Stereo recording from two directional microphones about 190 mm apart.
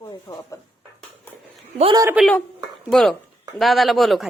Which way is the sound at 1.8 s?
25° right (ahead or behind).